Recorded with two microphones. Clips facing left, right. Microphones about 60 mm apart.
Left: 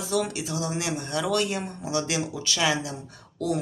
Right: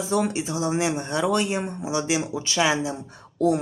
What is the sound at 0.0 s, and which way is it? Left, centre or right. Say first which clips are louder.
Speech: right 3 dB; right.